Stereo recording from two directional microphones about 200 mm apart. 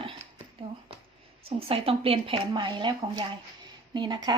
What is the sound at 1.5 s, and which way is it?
Speech, 30° right (ahead or behind).